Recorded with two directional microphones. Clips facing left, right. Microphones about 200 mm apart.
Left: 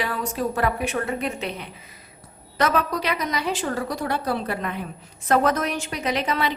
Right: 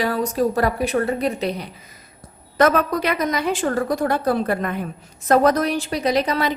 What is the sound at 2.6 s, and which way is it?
A woman's voice, 50° right (ahead or behind).